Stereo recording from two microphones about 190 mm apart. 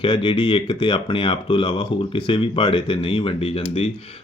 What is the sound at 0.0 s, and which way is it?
Speech, 25° left (ahead or behind).